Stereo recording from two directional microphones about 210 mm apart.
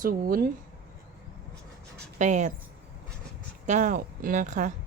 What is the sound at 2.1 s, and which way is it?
Speech, 35° right (ahead or behind).